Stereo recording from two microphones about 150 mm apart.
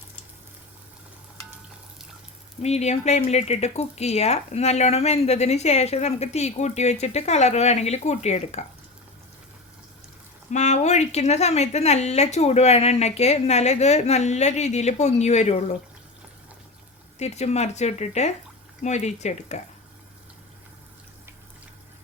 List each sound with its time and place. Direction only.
2.6 s speech: 45° left (ahead or behind)
10.5 s speech: 50° left (ahead or behind)
17.2 s speech: 45° left (ahead or behind)